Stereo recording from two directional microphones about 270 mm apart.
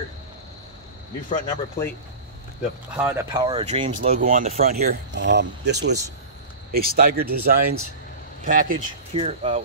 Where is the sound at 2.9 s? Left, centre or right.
Centre; by 7.3 s right.